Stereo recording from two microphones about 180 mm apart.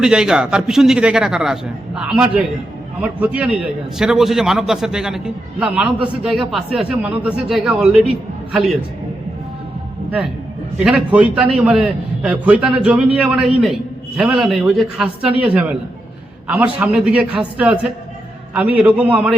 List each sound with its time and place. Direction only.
0.0 s a man's voice: 5° right (ahead or behind)
10.8 s a man's voice: 5° right (ahead or behind)